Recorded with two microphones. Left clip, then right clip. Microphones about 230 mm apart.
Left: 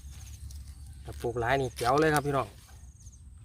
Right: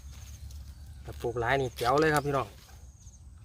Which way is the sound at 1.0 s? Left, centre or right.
Left.